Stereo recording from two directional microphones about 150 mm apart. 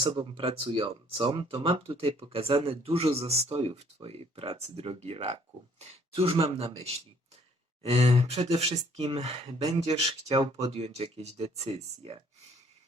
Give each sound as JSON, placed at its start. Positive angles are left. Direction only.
{"t": 0.3, "sound": "speech", "side_deg": -35}
{"t": 7.8, "sound": "speech", "side_deg": -45}